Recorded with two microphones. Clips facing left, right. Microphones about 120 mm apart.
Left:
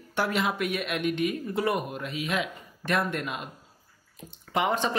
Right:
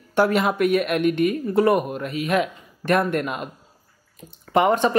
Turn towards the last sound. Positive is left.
turn(degrees=-50)  # may be behind; listen again after turning